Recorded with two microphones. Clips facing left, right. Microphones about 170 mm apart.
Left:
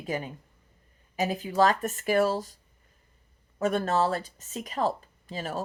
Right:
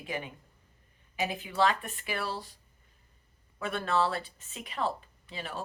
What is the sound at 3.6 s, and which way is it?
Speech, 40° left (ahead or behind).